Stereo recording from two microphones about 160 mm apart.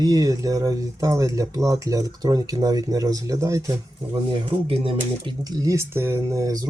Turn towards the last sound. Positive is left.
turn(degrees=-20)  # may be behind; listen again after turning